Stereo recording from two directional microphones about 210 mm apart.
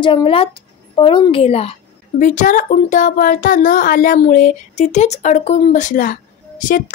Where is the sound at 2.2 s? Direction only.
40° left (ahead or behind).